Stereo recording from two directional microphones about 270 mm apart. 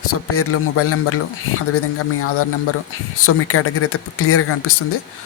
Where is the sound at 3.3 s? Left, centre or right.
Left.